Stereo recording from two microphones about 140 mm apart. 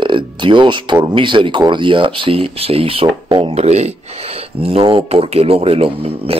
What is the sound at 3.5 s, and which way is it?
Speech, 50° right (ahead or behind).